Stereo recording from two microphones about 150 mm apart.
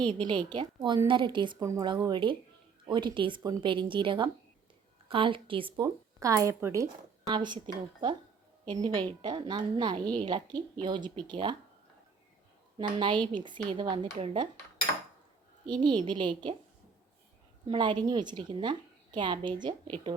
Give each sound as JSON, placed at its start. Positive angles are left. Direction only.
{"t": 0.2, "sound": "a woman's voice", "side_deg": -30}
{"t": 1.5, "sound": "a woman's voice", "side_deg": -20}
{"t": 7.3, "sound": "a woman's voice", "side_deg": -30}
{"t": 8.8, "sound": "a woman's voice", "side_deg": -30}
{"t": 12.7, "sound": "a woman's voice", "side_deg": -30}
{"t": 15.6, "sound": "a woman's voice", "side_deg": -30}
{"t": 17.7, "sound": "a woman's voice", "side_deg": -30}